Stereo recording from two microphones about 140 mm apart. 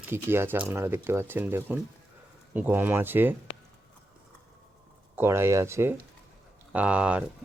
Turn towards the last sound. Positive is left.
turn(degrees=-10)  # may be behind; listen again after turning